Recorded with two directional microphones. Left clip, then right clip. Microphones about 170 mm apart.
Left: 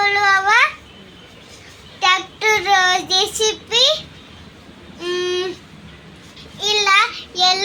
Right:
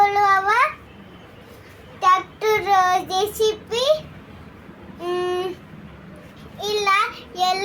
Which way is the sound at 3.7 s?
Centre (ahead or behind).